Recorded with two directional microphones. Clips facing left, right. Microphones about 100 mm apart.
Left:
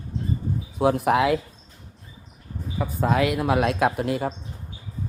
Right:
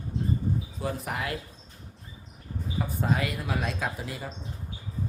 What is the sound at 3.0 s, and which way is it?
A man's voice, 85° left.